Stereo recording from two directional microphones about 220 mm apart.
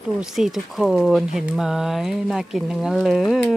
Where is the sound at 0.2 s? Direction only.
Centre (ahead or behind).